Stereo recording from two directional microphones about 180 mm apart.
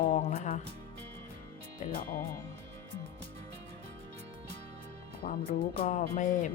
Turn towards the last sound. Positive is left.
turn(degrees=45)  # may be behind; listen again after turning